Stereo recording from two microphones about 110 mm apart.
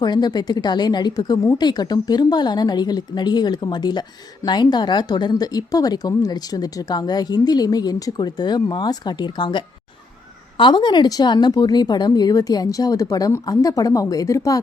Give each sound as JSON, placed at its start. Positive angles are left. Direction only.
{"t": 0.0, "sound": "speech", "side_deg": 40}